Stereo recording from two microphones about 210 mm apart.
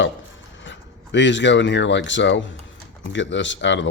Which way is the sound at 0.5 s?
60° left (ahead or behind).